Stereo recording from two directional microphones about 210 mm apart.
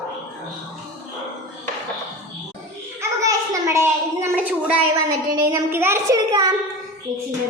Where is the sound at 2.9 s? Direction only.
15° right (ahead or behind).